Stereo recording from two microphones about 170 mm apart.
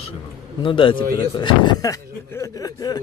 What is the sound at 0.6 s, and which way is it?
Speech, 30° left (ahead or behind).